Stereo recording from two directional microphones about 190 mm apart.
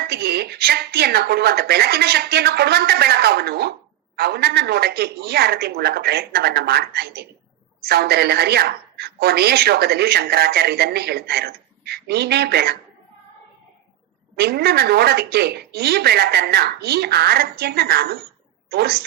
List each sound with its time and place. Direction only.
0.1 s a woman's voice: 55° right (ahead or behind)
14.3 s a woman's voice: 55° right (ahead or behind)